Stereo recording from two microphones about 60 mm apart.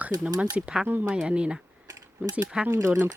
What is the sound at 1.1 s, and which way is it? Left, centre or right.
Speech, centre.